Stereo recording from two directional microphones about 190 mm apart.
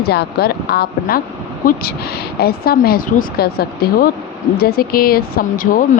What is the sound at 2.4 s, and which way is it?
Speech, 55° left (ahead or behind).